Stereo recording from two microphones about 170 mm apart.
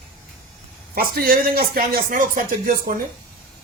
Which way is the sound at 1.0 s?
60° right (ahead or behind).